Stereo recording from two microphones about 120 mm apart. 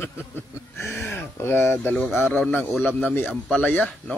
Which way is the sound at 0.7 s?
20° left (ahead or behind).